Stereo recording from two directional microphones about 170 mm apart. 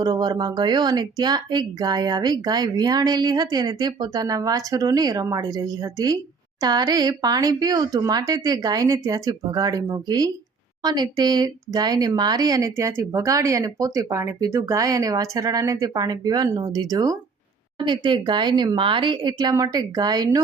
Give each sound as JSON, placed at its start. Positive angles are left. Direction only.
{"t": 0.0, "sound": "speech", "side_deg": -25}